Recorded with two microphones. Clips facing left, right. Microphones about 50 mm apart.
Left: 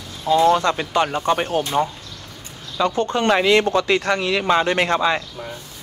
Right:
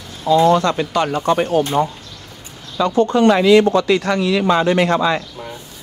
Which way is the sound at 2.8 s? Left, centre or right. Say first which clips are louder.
Right 5 dB; left.